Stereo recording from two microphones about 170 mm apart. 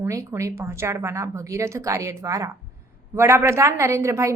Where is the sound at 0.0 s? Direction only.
15° right (ahead or behind).